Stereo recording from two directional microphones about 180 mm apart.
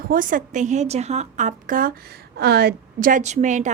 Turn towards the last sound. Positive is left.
turn(degrees=-40)  # may be behind; listen again after turning